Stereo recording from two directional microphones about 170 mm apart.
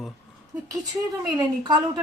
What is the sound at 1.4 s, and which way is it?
Speech, 25° right (ahead or behind).